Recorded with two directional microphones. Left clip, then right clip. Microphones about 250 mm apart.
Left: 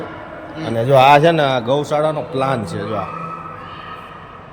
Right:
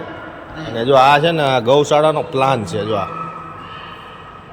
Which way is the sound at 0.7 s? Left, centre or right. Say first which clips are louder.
Even; left.